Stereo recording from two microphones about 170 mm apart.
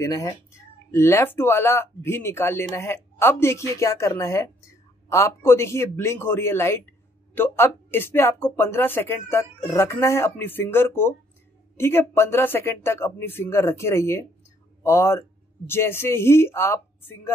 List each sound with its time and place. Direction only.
0.0 s a man's voice: 20° left (ahead or behind)